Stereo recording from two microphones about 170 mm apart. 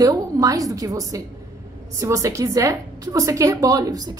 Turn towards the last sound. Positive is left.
turn(degrees=-20)  # may be behind; listen again after turning